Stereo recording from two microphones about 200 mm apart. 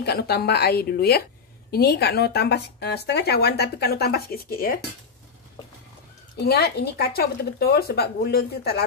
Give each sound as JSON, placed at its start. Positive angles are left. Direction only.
{"t": 0.0, "sound": "speech", "side_deg": 55}
{"t": 6.3, "sound": "speech", "side_deg": 55}